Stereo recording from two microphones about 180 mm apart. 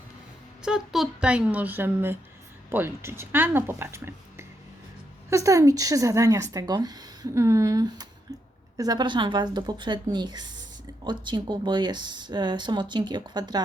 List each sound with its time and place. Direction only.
0.6 s a woman's voice: 5° right (ahead or behind); by 13.6 s 25° right (ahead or behind)